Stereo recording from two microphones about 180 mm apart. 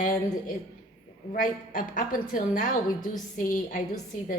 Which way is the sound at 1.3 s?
50° left (ahead or behind).